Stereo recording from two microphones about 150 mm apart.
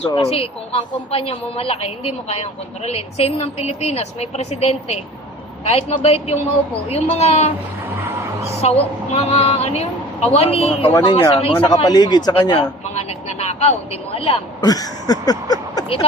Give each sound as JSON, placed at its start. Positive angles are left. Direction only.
{"t": 0.1, "sound": "a woman's voice", "side_deg": 40}
{"t": 8.6, "sound": "a woman's voice", "side_deg": 45}
{"t": 10.9, "sound": "speech", "side_deg": 30}
{"t": 14.6, "sound": "a sound", "side_deg": 25}